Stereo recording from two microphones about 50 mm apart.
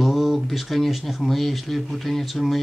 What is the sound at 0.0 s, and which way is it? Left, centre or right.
Speech, centre.